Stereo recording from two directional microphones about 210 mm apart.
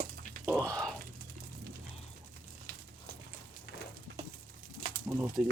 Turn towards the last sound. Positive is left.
turn(degrees=-10)  # may be behind; listen again after turning